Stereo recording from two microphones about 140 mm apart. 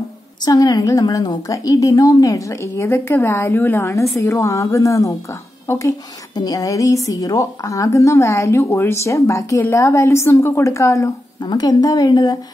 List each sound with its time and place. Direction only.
0.5 s a woman's voice: 25° left (ahead or behind)